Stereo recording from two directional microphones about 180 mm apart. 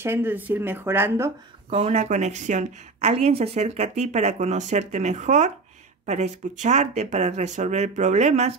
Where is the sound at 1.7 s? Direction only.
35° right (ahead or behind).